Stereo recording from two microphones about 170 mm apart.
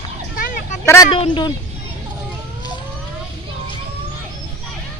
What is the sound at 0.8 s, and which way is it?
Speech, 15° left (ahead or behind).